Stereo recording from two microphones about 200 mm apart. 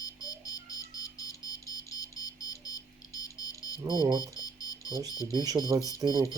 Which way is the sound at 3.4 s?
20° left (ahead or behind).